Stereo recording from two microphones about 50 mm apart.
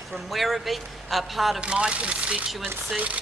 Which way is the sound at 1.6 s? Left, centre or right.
Right.